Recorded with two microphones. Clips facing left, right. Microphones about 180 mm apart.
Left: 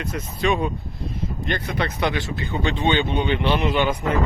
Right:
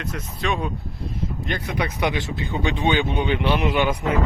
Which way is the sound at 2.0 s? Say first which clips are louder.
Even; 20° right (ahead or behind).